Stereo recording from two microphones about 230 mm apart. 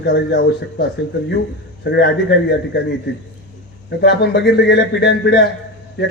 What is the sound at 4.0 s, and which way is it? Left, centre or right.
A man's voice, left.